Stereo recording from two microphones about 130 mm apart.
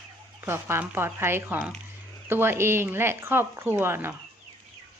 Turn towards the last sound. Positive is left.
turn(degrees=-15)  # may be behind; listen again after turning